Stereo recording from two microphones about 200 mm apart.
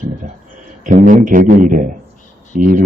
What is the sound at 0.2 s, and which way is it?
A man's voice, 40° right (ahead or behind).